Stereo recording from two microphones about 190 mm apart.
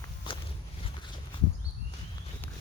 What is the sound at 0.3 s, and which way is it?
Walk, 25° left (ahead or behind).